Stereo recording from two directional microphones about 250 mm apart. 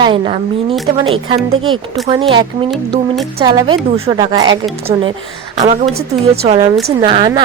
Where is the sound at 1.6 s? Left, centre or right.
Centre.